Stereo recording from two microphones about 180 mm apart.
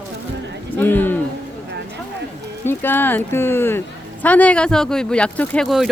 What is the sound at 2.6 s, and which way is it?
Speech, 10° left (ahead or behind).